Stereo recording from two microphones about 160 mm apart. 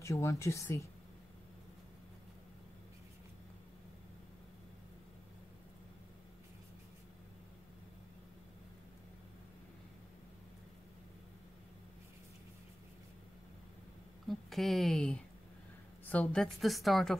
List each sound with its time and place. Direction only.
0.0 s speech: 20° left (ahead or behind)
14.2 s a sound: centre (ahead or behind)
16.1 s a woman's voice: 10° left (ahead or behind)